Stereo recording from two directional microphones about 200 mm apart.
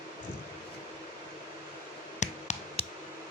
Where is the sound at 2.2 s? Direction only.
35° left (ahead or behind).